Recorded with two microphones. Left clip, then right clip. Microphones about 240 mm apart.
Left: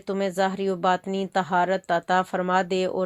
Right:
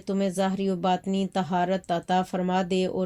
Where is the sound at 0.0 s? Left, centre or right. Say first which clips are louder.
Left 3 dB; centre.